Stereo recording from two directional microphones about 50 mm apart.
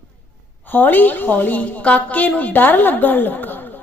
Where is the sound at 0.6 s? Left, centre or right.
Left.